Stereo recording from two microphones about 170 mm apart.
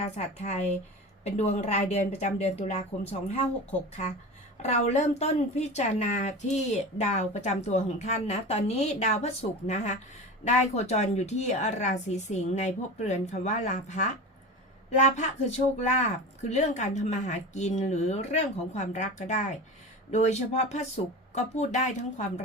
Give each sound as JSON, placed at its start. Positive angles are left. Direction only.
{"t": 0.0, "sound": "a woman's voice", "side_deg": 40}